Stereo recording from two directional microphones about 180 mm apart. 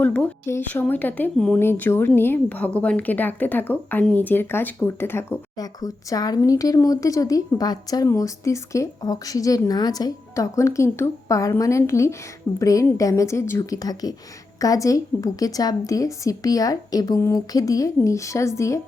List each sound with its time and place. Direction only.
0.0 s a woman's voice: 10° left (ahead or behind)